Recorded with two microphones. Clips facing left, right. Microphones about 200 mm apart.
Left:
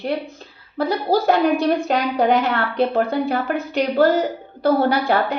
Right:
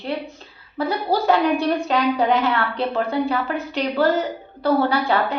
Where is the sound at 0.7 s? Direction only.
45° left (ahead or behind).